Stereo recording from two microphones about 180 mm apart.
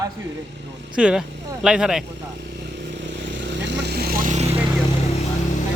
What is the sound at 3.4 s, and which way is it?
Vehicle, 80° right.